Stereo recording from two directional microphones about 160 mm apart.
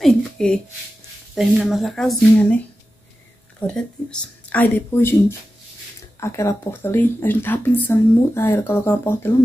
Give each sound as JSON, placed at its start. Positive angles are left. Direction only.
{"t": 0.0, "sound": "a sound", "side_deg": 5}
{"t": 1.3, "sound": "speech", "side_deg": 0}
{"t": 3.6, "sound": "speech", "side_deg": 5}
{"t": 6.1, "sound": "speech", "side_deg": 20}